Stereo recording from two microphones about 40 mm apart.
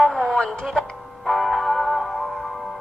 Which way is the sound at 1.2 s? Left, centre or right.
Centre.